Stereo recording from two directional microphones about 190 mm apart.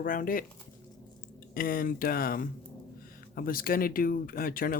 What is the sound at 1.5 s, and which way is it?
Speech, 50° left (ahead or behind).